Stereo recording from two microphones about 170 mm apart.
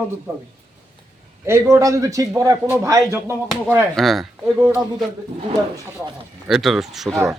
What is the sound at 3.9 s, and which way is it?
Speech, centre (ahead or behind).